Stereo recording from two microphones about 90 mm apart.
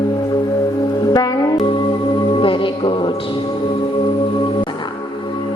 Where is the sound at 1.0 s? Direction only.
45° left (ahead or behind).